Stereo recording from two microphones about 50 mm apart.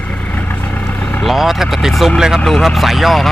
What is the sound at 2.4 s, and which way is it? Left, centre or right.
Speech, centre.